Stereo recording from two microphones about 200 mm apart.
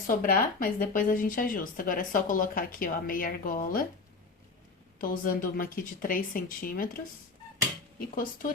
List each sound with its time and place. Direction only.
0.1 s a woman's voice: 45° left (ahead or behind)
4.9 s a woman's voice: 45° left (ahead or behind)
7.9 s a woman's voice: 45° left (ahead or behind)